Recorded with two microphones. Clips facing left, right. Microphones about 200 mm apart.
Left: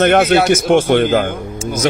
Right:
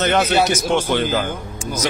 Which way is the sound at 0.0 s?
55° left (ahead or behind).